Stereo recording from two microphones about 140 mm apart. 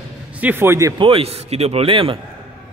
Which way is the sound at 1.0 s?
40° right (ahead or behind).